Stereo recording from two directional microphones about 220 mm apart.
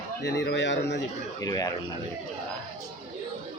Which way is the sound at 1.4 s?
15° left (ahead or behind).